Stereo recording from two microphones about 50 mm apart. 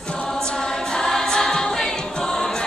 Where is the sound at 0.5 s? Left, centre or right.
Centre.